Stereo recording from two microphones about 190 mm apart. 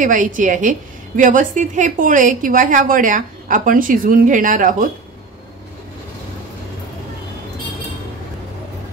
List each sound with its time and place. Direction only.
0.0 s a woman's voice: 45° right (ahead or behind)